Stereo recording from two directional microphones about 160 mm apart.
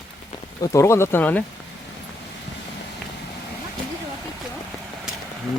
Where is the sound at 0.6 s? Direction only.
20° left (ahead or behind).